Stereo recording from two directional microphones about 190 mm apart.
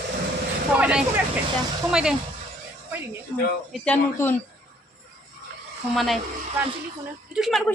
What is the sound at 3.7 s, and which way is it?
Speech, 5° left (ahead or behind).